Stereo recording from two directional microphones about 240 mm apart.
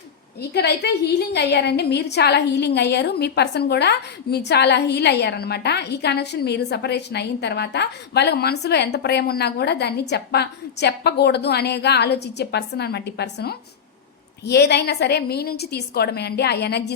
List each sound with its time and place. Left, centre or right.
0.5 s a woman's voice: left